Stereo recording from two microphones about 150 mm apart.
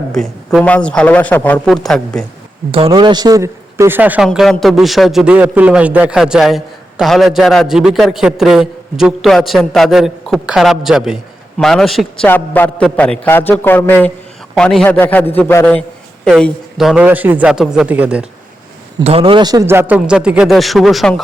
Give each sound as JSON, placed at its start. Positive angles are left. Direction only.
{"t": 0.1, "sound": "a man's voice", "side_deg": 5}
{"t": 2.7, "sound": "a man's voice", "side_deg": -35}
{"t": 4.3, "sound": "a man's voice", "side_deg": 0}
{"t": 16.4, "sound": "a man's voice", "side_deg": 0}
{"t": 19.0, "sound": "a man's voice", "side_deg": -40}